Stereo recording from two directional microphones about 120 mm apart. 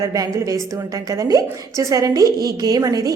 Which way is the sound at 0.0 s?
30° right (ahead or behind).